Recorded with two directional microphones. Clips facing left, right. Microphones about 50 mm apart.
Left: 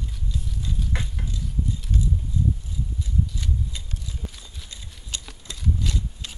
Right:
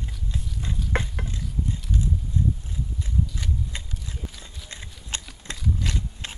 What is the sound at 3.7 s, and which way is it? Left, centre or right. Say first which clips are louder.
Horse: right 3 dB; right.